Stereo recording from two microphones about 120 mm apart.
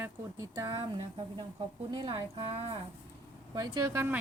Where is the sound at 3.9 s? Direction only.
15° right (ahead or behind).